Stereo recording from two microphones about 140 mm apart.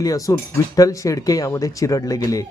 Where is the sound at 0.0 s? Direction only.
25° left (ahead or behind).